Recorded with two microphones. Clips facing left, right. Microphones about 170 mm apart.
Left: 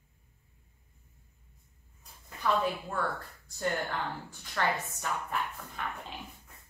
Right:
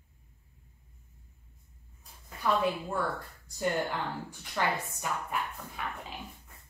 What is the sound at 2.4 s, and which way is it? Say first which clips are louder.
Speech: even; 10° right (ahead or behind).